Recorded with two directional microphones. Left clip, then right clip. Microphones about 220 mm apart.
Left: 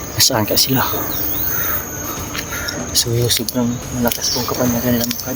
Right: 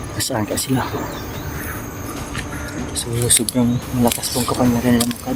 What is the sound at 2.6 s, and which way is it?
Mouse, 45° left (ahead or behind).